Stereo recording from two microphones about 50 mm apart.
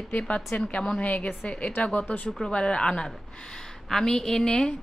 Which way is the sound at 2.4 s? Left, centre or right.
Centre.